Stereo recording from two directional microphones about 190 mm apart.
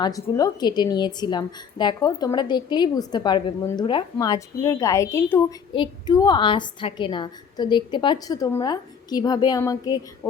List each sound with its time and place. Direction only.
0.0 s a woman's voice: 20° left (ahead or behind)